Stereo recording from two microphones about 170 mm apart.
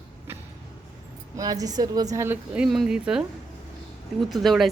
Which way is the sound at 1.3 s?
20° right (ahead or behind).